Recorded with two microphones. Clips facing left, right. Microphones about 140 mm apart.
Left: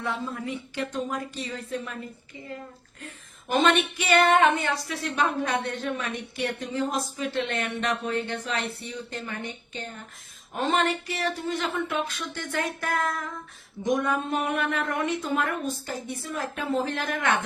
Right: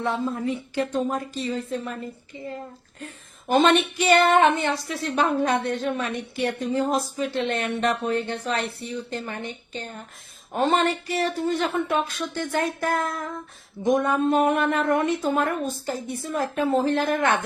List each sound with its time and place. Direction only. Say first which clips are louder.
0.0 s a woman's voice: right 6 dB; 35° right (ahead or behind)
3.5 s a woman's voice: right 4 dB; 35° right (ahead or behind)
14.3 s a sound: right 7 dB; 40° right (ahead or behind)
15.2 s a woman's voice: right 4 dB; 35° right (ahead or behind)